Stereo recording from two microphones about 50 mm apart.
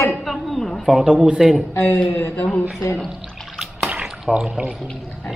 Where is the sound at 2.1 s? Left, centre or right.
Left.